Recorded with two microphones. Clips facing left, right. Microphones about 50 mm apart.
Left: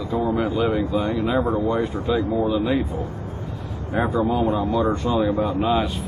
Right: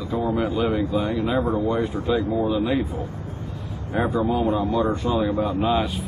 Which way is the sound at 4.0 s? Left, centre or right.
Centre.